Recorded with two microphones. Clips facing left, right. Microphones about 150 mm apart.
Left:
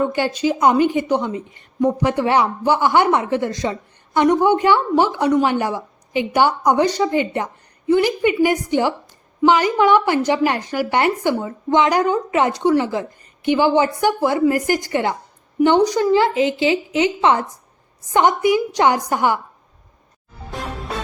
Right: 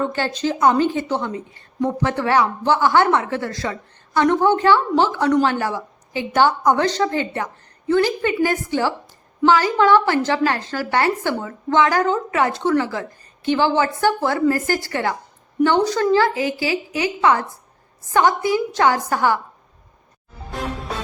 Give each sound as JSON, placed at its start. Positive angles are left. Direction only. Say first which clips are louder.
{"t": 0.0, "sound": "a woman's voice", "louder": "left 3 dB", "side_deg": 15}
{"t": 20.5, "sound": "music", "louder": "right 1 dB", "side_deg": 0}